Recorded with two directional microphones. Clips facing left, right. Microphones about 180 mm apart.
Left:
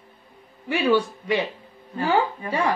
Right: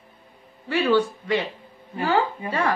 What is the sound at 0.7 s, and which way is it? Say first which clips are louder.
Speech: even; 15° left (ahead or behind).